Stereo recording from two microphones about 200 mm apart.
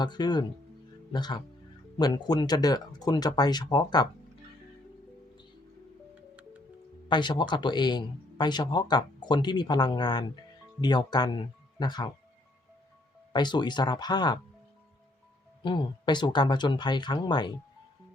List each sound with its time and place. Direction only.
0.0 s speech: 20° left (ahead or behind)
6.1 s music: 5° right (ahead or behind)
7.1 s speech: 25° left (ahead or behind)
13.3 s speech: 20° left (ahead or behind)
15.6 s speech: 25° left (ahead or behind)